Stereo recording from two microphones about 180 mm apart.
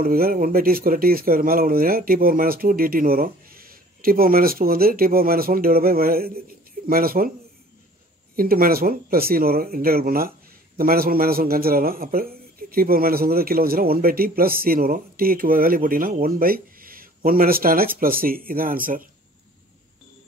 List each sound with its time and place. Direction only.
0.0 s a man's voice: 55° right (ahead or behind)
8.4 s a man's voice: 55° right (ahead or behind)